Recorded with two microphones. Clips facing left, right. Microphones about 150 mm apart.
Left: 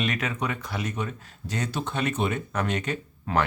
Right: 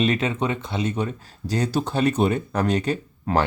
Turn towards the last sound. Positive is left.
turn(degrees=-35)  # may be behind; listen again after turning